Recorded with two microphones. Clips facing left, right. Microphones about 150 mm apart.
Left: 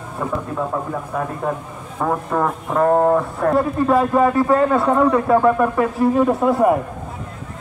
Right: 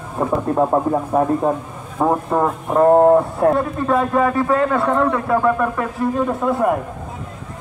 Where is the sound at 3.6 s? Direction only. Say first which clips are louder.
Left 2 dB; 5° left (ahead or behind).